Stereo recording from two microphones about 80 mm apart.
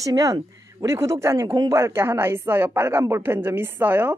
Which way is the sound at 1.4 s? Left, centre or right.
Right.